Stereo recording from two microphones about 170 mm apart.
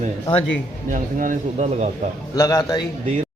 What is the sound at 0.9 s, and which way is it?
Speech, 50° right (ahead or behind).